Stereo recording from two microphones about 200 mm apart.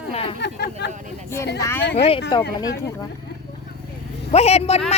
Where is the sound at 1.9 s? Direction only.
30° left (ahead or behind).